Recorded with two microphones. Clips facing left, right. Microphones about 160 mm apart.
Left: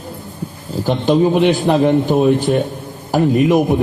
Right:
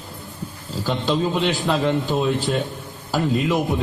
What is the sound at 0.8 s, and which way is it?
A man's voice, 15° left (ahead or behind).